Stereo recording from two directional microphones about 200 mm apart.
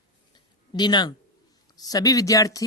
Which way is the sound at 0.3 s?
20° left (ahead or behind).